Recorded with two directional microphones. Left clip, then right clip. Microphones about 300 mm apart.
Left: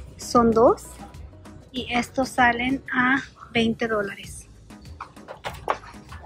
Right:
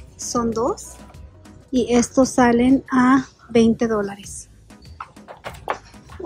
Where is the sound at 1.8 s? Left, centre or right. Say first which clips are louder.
Right 8 dB; centre.